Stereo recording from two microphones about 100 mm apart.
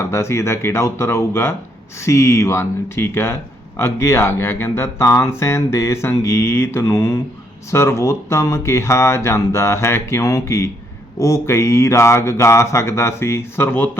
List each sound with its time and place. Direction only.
0.1 s speech: 30° left (ahead or behind)